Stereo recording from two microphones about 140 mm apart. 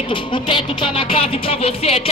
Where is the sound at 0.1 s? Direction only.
35° left (ahead or behind).